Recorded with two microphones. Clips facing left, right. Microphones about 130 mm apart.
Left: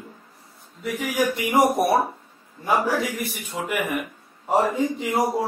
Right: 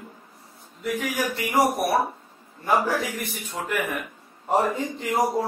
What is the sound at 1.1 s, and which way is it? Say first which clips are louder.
A man's voice: left 4 dB; 20° left (ahead or behind).